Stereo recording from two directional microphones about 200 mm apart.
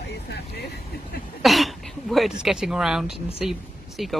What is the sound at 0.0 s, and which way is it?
Vehicle, 55° left (ahead or behind).